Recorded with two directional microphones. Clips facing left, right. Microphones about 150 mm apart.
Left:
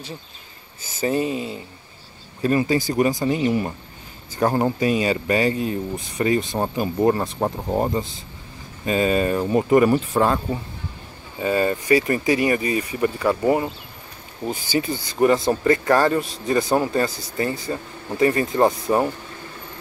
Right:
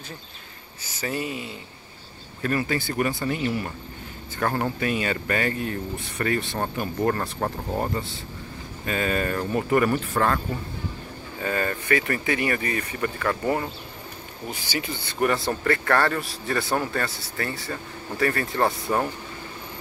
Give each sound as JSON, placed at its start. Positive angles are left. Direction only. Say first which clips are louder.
{"t": 1.0, "sound": "speech", "louder": "left 7 dB", "side_deg": 25}
{"t": 14.4, "sound": "speech", "louder": "left 8 dB", "side_deg": 35}
{"t": 15.1, "sound": "speech", "louder": "left 6 dB", "side_deg": 20}